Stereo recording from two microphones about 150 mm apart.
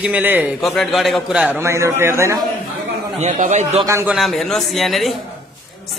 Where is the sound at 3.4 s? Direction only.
50° right (ahead or behind).